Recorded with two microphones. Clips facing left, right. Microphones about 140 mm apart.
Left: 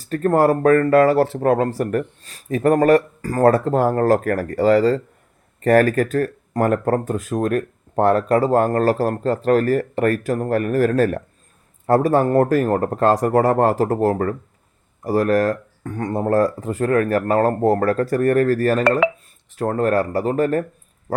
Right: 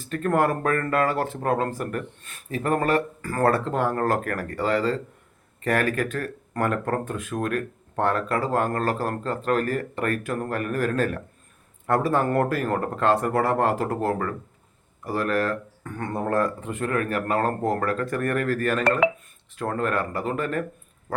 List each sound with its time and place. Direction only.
0.0 s speech: 40° left (ahead or behind)